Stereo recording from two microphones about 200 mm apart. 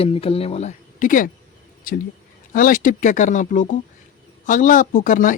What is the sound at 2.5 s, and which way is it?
Speech, 45° left (ahead or behind).